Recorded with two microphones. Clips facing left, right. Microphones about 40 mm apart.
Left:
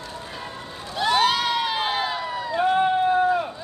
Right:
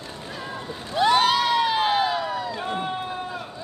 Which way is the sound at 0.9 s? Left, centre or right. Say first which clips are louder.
Right 2 dB; centre.